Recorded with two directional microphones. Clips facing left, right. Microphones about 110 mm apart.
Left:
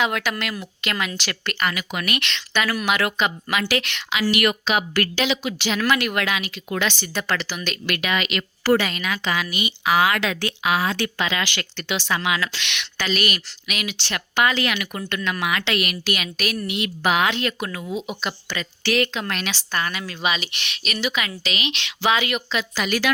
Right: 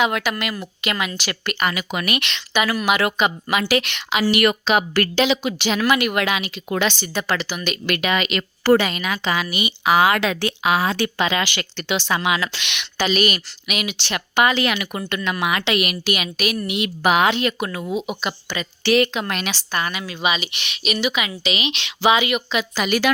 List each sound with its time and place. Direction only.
0.0 s speech: 10° right (ahead or behind)
4.4 s a woman's voice: 35° right (ahead or behind)
5.8 s speech: 10° right (ahead or behind)
6.2 s a woman's voice: 20° right (ahead or behind)
7.1 s speech: 5° right (ahead or behind)
7.9 s a woman's voice: 30° right (ahead or behind)
8.9 s a woman's voice: 20° right (ahead or behind); by 20.8 s 5° right (ahead or behind)
20.8 s speech: 15° right (ahead or behind)